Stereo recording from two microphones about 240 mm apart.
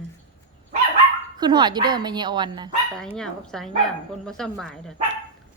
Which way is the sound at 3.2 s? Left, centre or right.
Centre.